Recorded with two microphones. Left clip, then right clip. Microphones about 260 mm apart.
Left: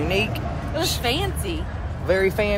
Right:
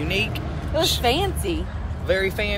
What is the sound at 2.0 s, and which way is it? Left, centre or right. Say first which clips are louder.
Speech: left 2 dB; centre.